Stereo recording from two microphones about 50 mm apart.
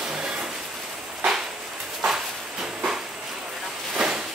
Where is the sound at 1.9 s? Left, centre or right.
Centre.